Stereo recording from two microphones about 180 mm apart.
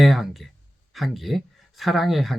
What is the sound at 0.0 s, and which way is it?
Speech, centre (ahead or behind).